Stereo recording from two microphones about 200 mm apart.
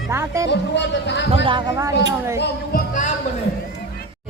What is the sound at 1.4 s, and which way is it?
Speech, 20° right (ahead or behind).